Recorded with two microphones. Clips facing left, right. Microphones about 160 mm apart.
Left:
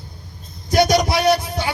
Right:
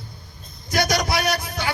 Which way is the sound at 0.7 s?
25° left (ahead or behind).